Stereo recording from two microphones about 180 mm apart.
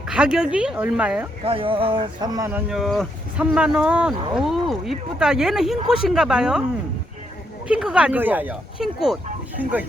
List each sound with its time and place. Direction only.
0.1 s speech: 5° right (ahead or behind)
1.5 s speech: 30° right (ahead or behind)
2.5 s speech: centre (ahead or behind)
7.7 s speech: 5° right (ahead or behind)